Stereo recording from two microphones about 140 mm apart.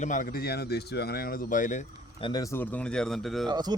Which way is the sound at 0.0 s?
70° left (ahead or behind).